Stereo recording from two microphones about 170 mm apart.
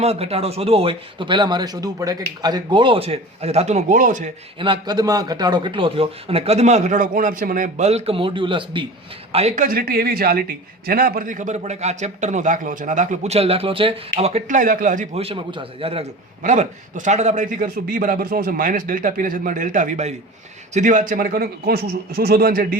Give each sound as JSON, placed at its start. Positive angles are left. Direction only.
{"t": 0.0, "sound": "a man's voice", "side_deg": -35}
{"t": 4.6, "sound": "a man's voice", "side_deg": -25}
{"t": 9.6, "sound": "a man's voice", "side_deg": -60}
{"t": 15.1, "sound": "a man's voice", "side_deg": -35}
{"t": 16.4, "sound": "a man's voice", "side_deg": -45}